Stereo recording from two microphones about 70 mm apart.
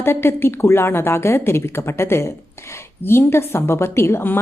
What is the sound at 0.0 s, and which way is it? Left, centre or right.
A woman's voice, left.